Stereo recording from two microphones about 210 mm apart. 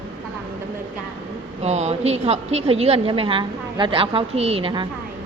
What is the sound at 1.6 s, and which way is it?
A woman's voice, 30° right (ahead or behind).